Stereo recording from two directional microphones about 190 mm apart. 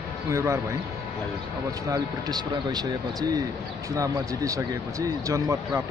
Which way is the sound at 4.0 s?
15° right (ahead or behind).